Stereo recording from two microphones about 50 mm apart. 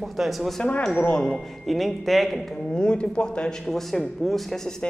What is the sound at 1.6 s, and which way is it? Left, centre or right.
Speech, centre.